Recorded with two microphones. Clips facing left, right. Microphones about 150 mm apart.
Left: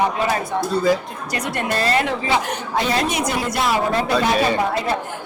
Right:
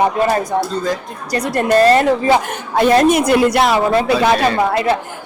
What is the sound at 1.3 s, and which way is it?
A woman's voice, 35° right (ahead or behind).